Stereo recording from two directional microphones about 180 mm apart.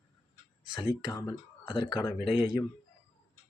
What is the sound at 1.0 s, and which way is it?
Speech, 20° left (ahead or behind).